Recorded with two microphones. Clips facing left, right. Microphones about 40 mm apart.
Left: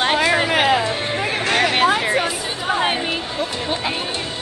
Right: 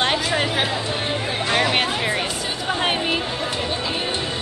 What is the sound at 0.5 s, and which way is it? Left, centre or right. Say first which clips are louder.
Music: left 6 dB; left.